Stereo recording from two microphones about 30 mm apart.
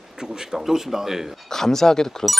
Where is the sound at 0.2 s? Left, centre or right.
Centre.